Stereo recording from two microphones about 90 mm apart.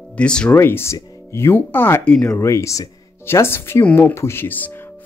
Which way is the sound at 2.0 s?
10° left (ahead or behind).